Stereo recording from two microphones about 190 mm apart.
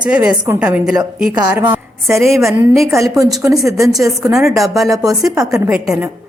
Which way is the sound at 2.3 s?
15° right (ahead or behind).